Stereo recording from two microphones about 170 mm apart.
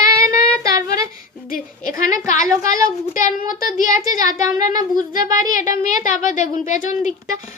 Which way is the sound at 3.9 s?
20° right (ahead or behind).